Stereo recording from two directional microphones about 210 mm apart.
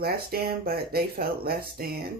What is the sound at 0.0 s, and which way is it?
Speech, 45° right (ahead or behind).